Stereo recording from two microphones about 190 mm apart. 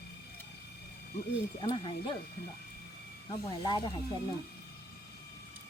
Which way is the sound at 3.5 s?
25° left (ahead or behind).